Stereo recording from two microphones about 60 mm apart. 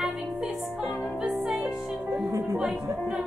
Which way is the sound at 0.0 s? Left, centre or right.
Centre.